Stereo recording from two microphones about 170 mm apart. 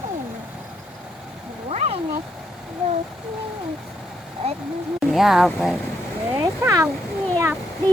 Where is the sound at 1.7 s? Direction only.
40° right (ahead or behind).